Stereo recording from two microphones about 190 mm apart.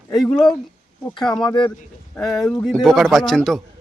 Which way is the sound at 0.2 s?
Centre (ahead or behind).